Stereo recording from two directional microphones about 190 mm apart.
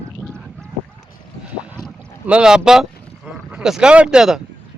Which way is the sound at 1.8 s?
5° right (ahead or behind).